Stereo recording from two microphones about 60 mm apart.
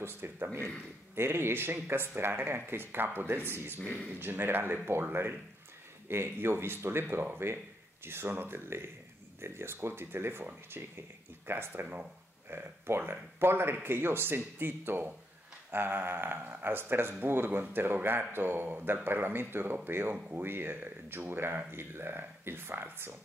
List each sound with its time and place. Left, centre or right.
0.0 s speech: right
6.0 s speech: right